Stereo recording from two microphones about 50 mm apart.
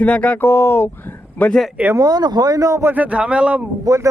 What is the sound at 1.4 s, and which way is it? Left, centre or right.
Speech, left.